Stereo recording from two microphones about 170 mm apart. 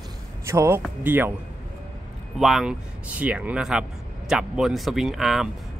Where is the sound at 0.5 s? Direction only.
15° right (ahead or behind).